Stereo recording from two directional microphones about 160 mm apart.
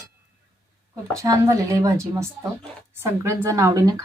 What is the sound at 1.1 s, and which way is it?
A woman's voice, 20° right (ahead or behind).